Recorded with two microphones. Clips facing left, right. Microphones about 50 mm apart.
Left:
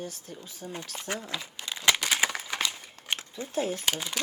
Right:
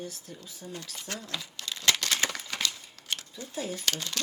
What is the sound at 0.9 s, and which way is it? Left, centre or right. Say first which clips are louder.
Speech: left 4 dB; left.